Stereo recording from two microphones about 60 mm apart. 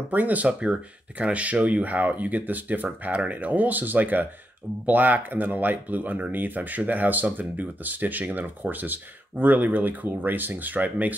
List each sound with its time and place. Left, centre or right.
0.1 s speech: right